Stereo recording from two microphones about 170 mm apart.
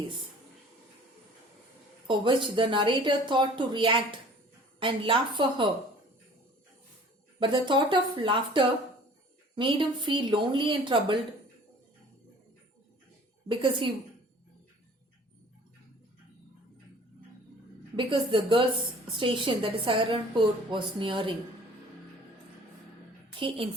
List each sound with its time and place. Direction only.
2.0 s speech: 30° right (ahead or behind)
7.3 s speech: 30° right (ahead or behind)
13.5 s speech: 30° right (ahead or behind)
17.9 s a woman's voice: 30° right (ahead or behind)
23.4 s a woman's voice: 35° right (ahead or behind)